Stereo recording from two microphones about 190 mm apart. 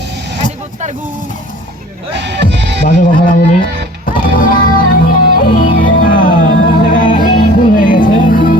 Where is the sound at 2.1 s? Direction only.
65° right (ahead or behind).